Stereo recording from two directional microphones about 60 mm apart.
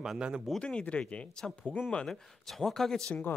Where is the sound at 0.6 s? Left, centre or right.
Centre.